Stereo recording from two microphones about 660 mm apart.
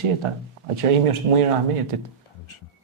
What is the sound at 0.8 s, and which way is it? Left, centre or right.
Speech, right.